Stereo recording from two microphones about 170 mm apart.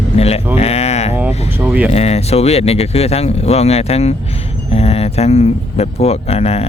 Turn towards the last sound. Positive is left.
turn(degrees=35)  # may be behind; listen again after turning